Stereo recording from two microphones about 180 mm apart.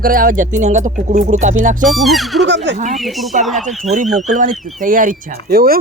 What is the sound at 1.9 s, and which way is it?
Speech, centre (ahead or behind).